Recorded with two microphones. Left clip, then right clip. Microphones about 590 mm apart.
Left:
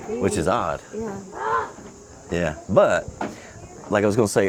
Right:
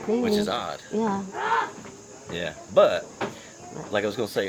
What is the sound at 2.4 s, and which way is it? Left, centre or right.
Speech, left.